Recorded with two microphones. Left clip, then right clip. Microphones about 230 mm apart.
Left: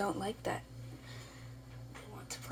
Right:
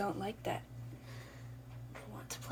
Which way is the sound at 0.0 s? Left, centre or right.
Left.